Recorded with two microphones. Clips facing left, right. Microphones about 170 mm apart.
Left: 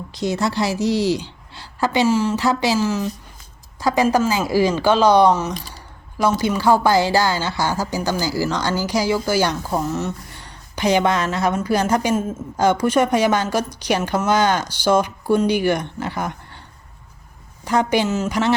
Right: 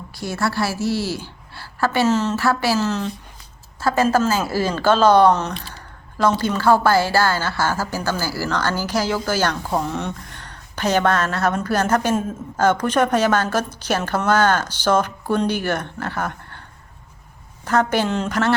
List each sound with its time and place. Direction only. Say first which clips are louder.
0.1 s a woman's voice: left 3 dB; 20° left (ahead or behind)
5.6 s a sound: right 1 dB; 10° left (ahead or behind)
6.4 s a woman's voice: left 1 dB; 15° left (ahead or behind)
17.7 s a woman's voice: left 1 dB; 10° left (ahead or behind)